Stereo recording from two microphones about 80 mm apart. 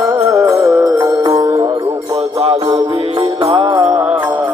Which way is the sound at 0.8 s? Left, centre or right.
Right.